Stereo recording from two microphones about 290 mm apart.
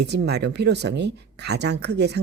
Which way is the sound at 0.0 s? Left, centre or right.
Right.